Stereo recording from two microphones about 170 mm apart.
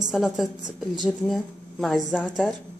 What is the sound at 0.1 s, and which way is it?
Speech, centre (ahead or behind).